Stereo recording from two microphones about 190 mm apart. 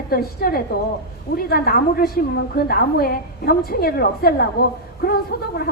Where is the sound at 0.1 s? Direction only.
50° left (ahead or behind).